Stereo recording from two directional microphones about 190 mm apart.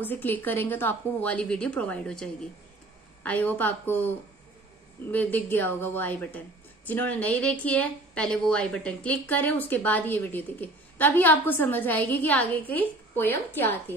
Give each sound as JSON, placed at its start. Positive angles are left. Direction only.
{"t": 0.0, "sound": "speech", "side_deg": 10}
{"t": 3.3, "sound": "speech", "side_deg": 10}
{"t": 5.1, "sound": "speech", "side_deg": 10}